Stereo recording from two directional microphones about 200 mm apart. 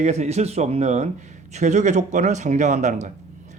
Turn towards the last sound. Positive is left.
turn(degrees=-35)  # may be behind; listen again after turning